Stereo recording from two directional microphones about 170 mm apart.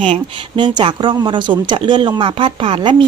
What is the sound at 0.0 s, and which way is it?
Speech, 30° right (ahead or behind).